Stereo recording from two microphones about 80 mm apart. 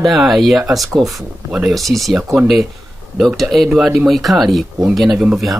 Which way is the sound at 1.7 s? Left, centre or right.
Centre.